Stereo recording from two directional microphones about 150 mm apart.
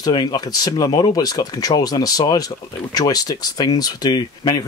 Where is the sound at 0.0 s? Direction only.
30° left (ahead or behind).